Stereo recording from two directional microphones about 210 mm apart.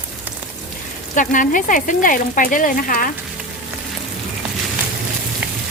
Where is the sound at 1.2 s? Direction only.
40° left (ahead or behind).